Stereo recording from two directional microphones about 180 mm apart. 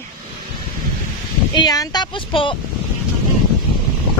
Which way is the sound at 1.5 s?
20° left (ahead or behind).